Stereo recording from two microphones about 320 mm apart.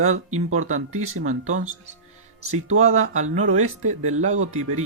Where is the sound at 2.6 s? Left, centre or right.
Right.